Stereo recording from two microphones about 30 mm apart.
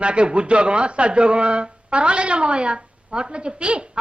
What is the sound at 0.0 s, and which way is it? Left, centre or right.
Speech, right.